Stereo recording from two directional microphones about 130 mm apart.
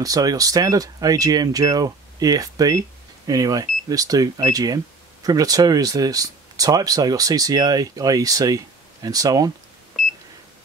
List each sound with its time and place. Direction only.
0.0 s speech: 30° right (ahead or behind)